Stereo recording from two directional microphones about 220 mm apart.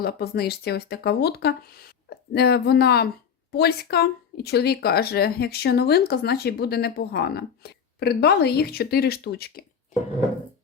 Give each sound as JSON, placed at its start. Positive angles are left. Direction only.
{"t": 0.0, "sound": "speech", "side_deg": 45}